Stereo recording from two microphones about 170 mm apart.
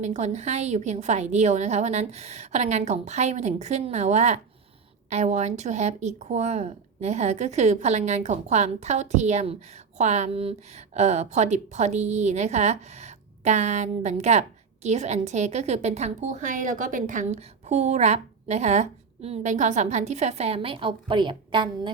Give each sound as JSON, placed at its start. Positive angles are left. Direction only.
{"t": 0.0, "sound": "speech", "side_deg": -40}